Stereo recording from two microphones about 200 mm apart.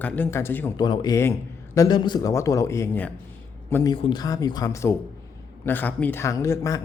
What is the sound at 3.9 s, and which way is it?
Speech, 25° left (ahead or behind).